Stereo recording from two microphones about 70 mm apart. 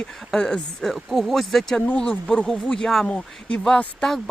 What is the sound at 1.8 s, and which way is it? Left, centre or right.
Speech, centre.